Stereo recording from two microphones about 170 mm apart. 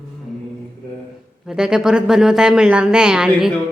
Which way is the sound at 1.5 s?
5° right (ahead or behind).